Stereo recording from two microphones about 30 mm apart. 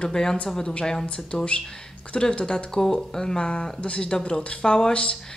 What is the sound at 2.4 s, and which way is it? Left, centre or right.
Speech, left.